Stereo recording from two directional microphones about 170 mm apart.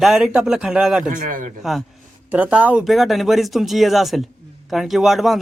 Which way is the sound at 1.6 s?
Centre (ahead or behind).